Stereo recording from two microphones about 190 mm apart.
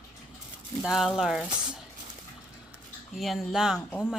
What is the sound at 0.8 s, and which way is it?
Speech, centre (ahead or behind).